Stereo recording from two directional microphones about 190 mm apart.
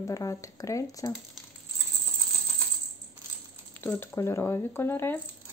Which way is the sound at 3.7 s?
10° left (ahead or behind).